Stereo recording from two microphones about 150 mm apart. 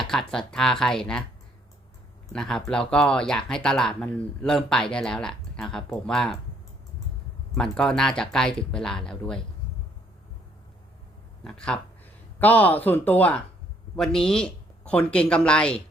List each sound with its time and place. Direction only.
0.0 s speech: 5° left (ahead or behind)
2.3 s speech: 5° left (ahead or behind)
7.5 s speech: 5° left (ahead or behind)
11.4 s speech: 5° left (ahead or behind)